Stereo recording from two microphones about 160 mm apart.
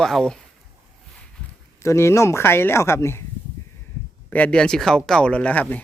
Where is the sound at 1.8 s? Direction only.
15° left (ahead or behind).